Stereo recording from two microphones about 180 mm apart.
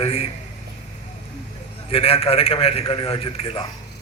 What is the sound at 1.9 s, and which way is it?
A man's voice, 30° left (ahead or behind).